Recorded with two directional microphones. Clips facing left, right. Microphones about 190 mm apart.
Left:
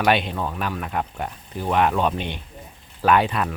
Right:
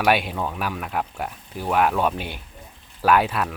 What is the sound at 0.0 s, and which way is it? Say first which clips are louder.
Speech: even; 5° right (ahead or behind).